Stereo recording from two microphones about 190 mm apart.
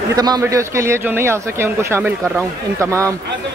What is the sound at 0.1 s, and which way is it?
A man's voice, 20° right (ahead or behind).